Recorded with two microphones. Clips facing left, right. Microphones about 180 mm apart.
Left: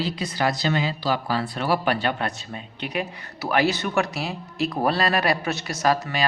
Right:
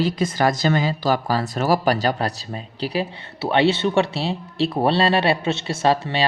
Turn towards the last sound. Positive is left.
turn(degrees=-30)  # may be behind; listen again after turning